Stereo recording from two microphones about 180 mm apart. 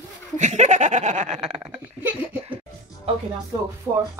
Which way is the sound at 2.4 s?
30° right (ahead or behind).